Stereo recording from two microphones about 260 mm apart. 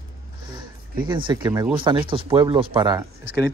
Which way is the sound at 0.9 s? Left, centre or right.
Centre.